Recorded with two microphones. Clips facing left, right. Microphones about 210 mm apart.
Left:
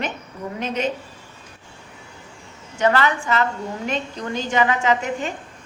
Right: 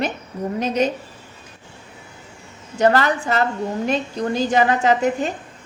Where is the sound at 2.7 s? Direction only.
40° right (ahead or behind).